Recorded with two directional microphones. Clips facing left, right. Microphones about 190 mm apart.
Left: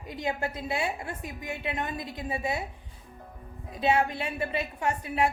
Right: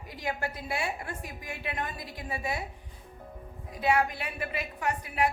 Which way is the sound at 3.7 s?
25° left (ahead or behind).